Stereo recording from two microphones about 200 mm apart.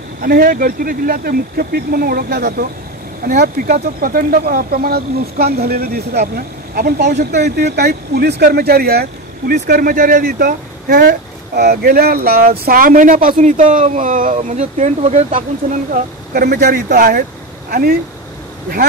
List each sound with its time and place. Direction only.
0.2 s speech: 45° right (ahead or behind)